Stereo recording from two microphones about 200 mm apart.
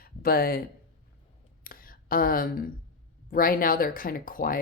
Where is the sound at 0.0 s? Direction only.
50° left (ahead or behind).